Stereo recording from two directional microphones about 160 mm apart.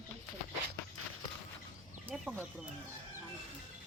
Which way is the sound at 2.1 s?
5° right (ahead or behind).